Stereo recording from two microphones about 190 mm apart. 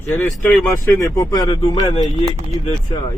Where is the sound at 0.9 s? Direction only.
20° left (ahead or behind).